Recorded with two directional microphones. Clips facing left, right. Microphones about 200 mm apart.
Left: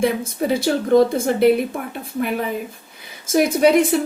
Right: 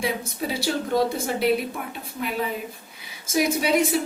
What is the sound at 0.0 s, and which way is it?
A woman's voice, 55° left (ahead or behind).